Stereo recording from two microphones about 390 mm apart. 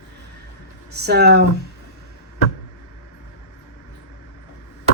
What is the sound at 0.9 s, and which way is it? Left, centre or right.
Speech, right.